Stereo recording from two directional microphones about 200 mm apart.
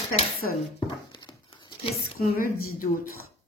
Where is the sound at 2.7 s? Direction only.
45° left (ahead or behind).